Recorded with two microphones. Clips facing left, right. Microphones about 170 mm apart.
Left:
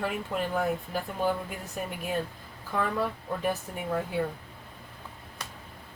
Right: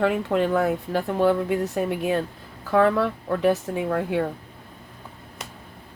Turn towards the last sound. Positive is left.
turn(degrees=-90)